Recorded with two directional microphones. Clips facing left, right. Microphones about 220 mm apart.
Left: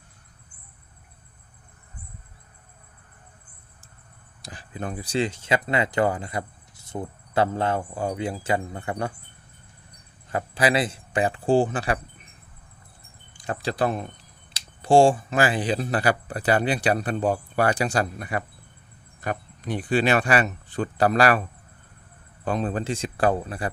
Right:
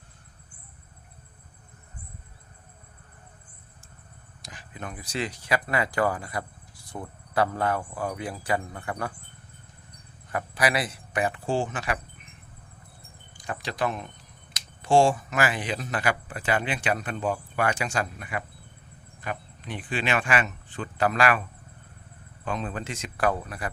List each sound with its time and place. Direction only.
4.4 s speech: 35° left (ahead or behind)
10.3 s speech: 25° left (ahead or behind)
13.5 s speech: 35° left (ahead or behind)
22.4 s speech: 35° left (ahead or behind)